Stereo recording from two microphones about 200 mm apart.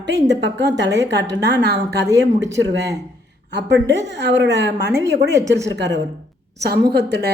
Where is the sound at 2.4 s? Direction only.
15° right (ahead or behind).